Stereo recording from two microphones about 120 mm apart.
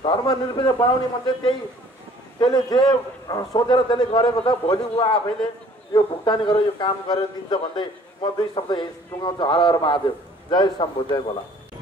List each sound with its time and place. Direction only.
0.0 s speech: 35° left (ahead or behind)